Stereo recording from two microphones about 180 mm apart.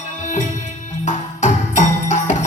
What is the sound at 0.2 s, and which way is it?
Music, 45° left (ahead or behind).